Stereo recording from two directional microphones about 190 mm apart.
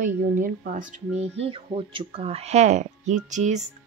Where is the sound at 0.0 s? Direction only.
45° right (ahead or behind).